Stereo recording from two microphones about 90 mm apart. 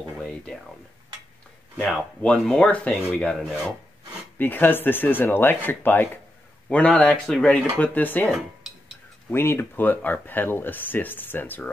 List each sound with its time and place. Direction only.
0.2 s a sound: 10° left (ahead or behind)
1.8 s speech: 5° right (ahead or behind)
2.2 s speech: 10° left (ahead or behind)
3.4 s speech: 5° right (ahead or behind)
4.4 s speech: 20° left (ahead or behind)
6.7 s speech: 10° left (ahead or behind)
7.8 s speech: 20° left (ahead or behind)
8.3 s cutlery: 5° right (ahead or behind)
9.3 s speech: 25° left (ahead or behind)